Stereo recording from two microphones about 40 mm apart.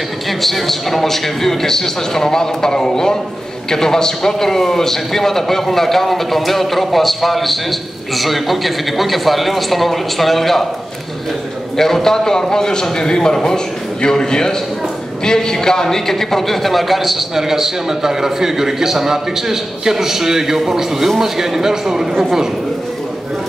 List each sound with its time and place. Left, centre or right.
0.4 s a man's voice: centre
11.7 s a man's voice: centre